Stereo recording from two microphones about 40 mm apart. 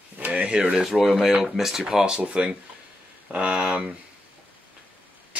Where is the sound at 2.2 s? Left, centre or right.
Right.